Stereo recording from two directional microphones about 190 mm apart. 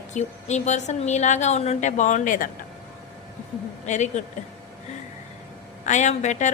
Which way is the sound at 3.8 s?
40° left (ahead or behind).